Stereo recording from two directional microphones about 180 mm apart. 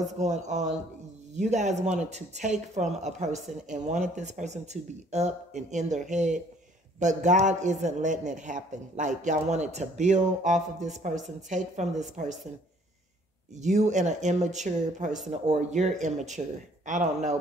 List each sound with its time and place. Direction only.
0.0 s a woman's voice: 40° right (ahead or behind)
13.6 s a woman's voice: 40° right (ahead or behind)